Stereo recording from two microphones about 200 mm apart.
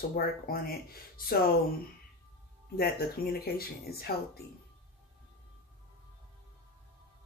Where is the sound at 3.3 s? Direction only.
50° left (ahead or behind).